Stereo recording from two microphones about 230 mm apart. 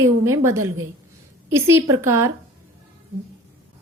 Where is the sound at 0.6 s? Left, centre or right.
Right.